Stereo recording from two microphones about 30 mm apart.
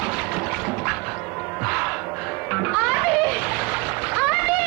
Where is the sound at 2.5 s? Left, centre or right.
Centre.